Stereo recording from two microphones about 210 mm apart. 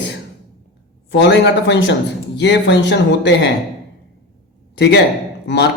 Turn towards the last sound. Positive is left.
turn(degrees=50)  # may be behind; listen again after turning